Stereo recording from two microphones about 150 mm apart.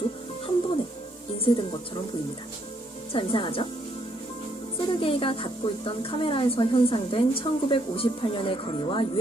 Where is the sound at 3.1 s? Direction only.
35° left (ahead or behind).